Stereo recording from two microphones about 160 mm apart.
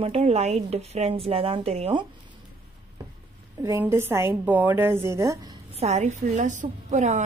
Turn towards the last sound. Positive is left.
turn(degrees=-45)  # may be behind; listen again after turning